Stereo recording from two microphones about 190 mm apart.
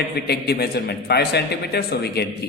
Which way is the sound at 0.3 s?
55° left (ahead or behind).